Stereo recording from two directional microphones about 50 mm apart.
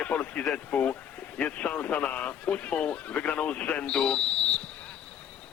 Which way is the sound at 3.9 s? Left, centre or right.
Centre.